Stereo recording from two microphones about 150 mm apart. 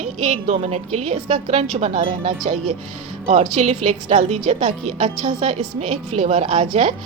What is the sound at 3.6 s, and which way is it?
A woman's voice, 45° right (ahead or behind).